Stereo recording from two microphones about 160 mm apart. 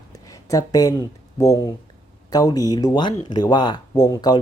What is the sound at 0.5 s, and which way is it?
Speech, 20° left (ahead or behind).